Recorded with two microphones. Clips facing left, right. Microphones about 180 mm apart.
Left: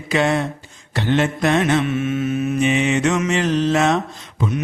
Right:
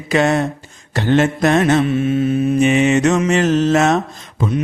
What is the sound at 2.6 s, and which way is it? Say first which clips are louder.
Mantra: right 4 dB; 45° right (ahead or behind).